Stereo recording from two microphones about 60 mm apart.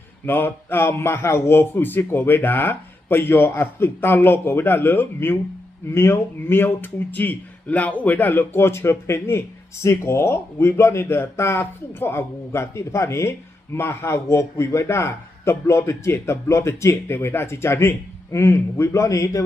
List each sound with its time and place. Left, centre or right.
0.3 s a man's voice: left